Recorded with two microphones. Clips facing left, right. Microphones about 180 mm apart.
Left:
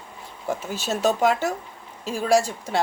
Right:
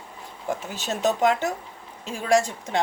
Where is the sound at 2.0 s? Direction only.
20° right (ahead or behind).